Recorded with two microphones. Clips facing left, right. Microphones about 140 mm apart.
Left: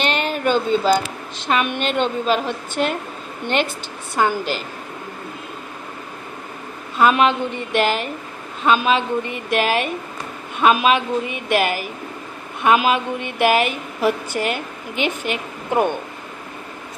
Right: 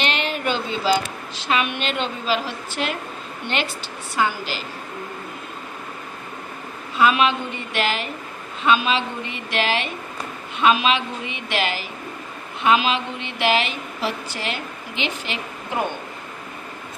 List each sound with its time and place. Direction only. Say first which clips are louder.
0.1 s a woman's voice: left 5 dB; 45° left (ahead or behind)
7.0 s a woman's voice: left 3 dB; 50° left (ahead or behind)